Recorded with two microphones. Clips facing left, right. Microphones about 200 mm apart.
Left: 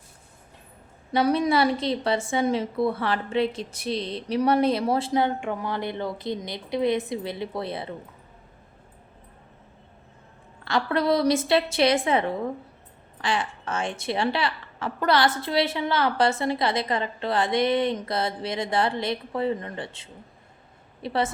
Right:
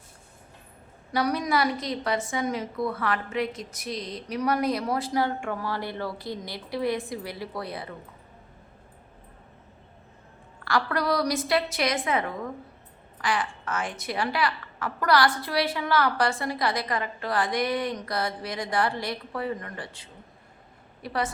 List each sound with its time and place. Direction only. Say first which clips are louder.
1.1 s a woman's voice: left 4 dB; 25° left (ahead or behind)
10.6 s a woman's voice: left 2 dB; 25° left (ahead or behind)